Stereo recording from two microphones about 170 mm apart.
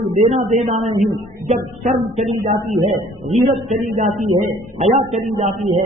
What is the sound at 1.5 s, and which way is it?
Speech, 55° right (ahead or behind).